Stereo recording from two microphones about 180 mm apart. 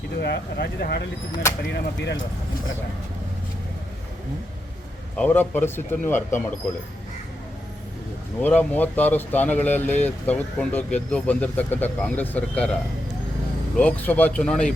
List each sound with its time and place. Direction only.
0.2 s speech: 65° left (ahead or behind)
5.1 s speech: 10° left (ahead or behind)
8.4 s speech: 10° left (ahead or behind)
13.7 s speech: 10° left (ahead or behind)